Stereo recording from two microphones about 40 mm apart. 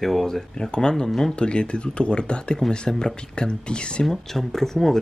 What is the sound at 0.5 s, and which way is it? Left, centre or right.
Speech, centre.